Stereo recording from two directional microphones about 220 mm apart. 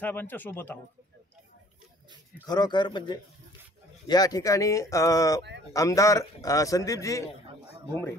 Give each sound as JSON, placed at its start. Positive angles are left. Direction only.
{"t": 0.0, "sound": "a man's voice", "side_deg": 10}
{"t": 2.4, "sound": "a man's voice", "side_deg": 20}